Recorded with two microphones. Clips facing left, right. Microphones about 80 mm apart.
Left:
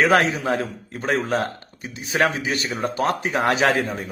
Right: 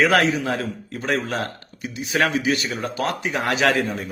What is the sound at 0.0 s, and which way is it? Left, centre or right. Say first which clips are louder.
A man's voice: even; left.